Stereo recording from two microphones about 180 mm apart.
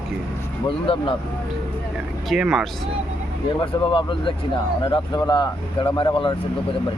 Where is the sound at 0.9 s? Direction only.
30° left (ahead or behind).